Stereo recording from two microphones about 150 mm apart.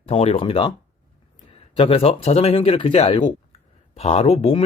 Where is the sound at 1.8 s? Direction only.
40° left (ahead or behind).